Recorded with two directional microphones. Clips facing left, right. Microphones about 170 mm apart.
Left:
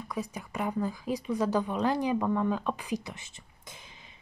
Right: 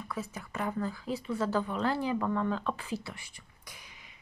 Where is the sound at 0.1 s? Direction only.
15° left (ahead or behind).